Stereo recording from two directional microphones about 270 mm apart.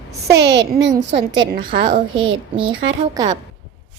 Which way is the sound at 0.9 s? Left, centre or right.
Centre.